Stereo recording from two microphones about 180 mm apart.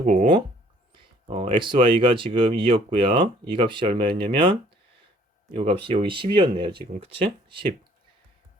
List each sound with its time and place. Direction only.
0.0 s speech: 40° right (ahead or behind)
0.9 s speech: 30° right (ahead or behind)
5.5 s speech: 30° right (ahead or behind)